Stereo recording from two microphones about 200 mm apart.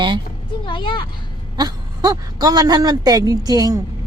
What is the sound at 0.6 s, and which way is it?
Speech, 25° left (ahead or behind).